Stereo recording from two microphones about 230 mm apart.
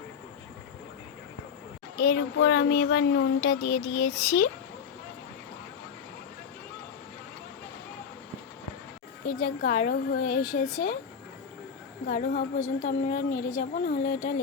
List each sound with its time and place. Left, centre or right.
2.0 s a sound: left
2.9 s speech: left
4.2 s a child's voice: left
9.4 s speech: left
12.0 s speech: left